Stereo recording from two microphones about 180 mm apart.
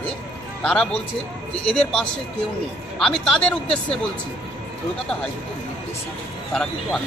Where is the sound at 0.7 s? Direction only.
5° left (ahead or behind).